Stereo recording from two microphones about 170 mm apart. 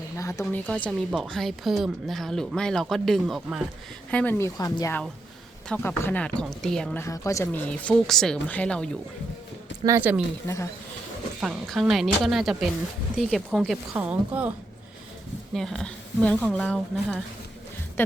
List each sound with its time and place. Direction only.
0.2 s speech: 15° left (ahead or behind)
0.5 s a woman's voice: 5° left (ahead or behind)
5.6 s a woman's voice: 10° left (ahead or behind)
7.0 s speech: 20° left (ahead or behind)
9.8 s speech: 15° right (ahead or behind)
10.4 s speech: 15° left (ahead or behind)
11.3 s a woman's voice: centre (ahead or behind)
15.5 s a woman's voice: 5° left (ahead or behind)